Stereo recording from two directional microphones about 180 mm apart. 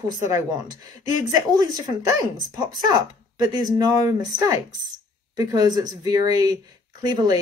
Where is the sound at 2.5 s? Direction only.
20° right (ahead or behind).